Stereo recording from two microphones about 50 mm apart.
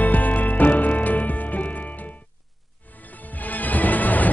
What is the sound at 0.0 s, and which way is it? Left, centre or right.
Music, left.